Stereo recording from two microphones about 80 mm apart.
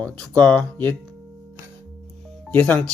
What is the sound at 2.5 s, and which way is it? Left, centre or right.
Speech, left.